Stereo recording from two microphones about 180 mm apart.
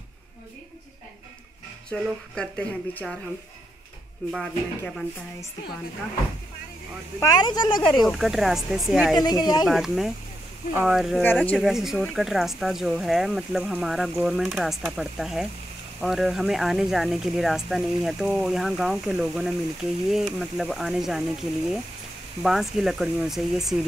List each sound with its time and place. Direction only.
1.9 s speech: 5° left (ahead or behind)
4.3 s speech: 5° left (ahead or behind)
7.2 s speech: 20° left (ahead or behind)
8.1 s speech: centre (ahead or behind)
9.2 s speech: 20° left (ahead or behind)
9.7 s speech: centre (ahead or behind)
11.2 s speech: 10° left (ahead or behind)
11.6 s speech: centre (ahead or behind)
22.4 s speech: centre (ahead or behind)